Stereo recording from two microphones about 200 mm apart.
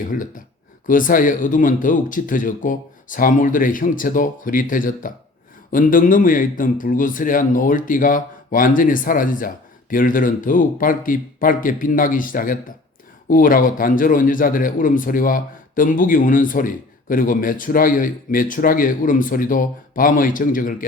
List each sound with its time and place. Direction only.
0.1 s a man's voice: 40° left (ahead or behind)